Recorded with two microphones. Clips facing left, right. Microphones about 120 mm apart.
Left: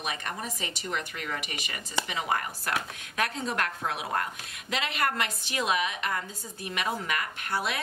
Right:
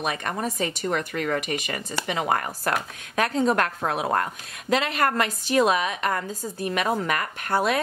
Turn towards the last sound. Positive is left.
turn(degrees=-45)  # may be behind; listen again after turning